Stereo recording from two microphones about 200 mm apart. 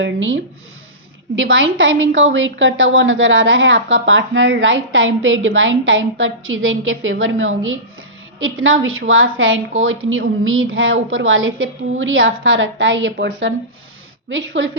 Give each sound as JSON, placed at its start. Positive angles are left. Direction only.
{"t": 0.0, "sound": "a woman's voice", "side_deg": -75}
{"t": 1.4, "sound": "a woman's voice", "side_deg": -75}
{"t": 8.4, "sound": "a woman's voice", "side_deg": -85}